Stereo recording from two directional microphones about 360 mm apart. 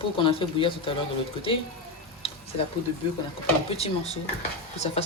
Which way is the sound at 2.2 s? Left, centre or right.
Centre.